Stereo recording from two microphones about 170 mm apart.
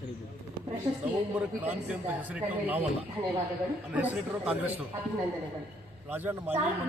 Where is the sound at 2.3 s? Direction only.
10° right (ahead or behind).